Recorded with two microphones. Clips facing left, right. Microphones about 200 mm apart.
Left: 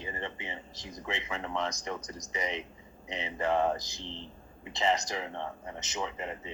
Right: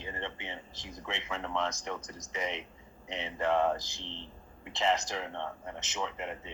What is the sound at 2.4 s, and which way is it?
Speech, centre (ahead or behind).